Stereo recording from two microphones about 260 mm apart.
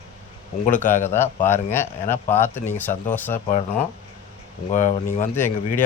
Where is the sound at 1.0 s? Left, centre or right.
Centre.